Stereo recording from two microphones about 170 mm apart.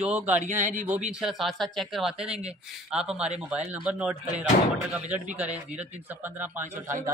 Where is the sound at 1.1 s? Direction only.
5° right (ahead or behind).